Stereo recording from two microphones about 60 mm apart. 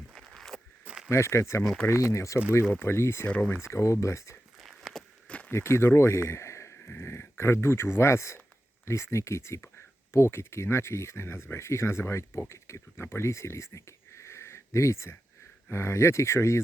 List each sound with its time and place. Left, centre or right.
0.1 s a sound: centre
0.9 s a sound: centre
1.1 s speech: left
2.7 s speech: left
3.2 s speech: left
3.5 s speech: left
4.6 s a sound: centre
5.5 s a man's voice: left
6.8 s speech: left
9.6 s speech: left